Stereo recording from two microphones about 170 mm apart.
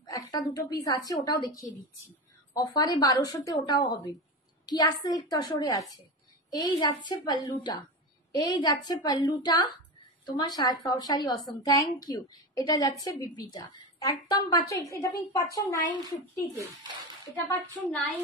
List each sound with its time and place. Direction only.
0.0 s a woman's voice: 25° left (ahead or behind)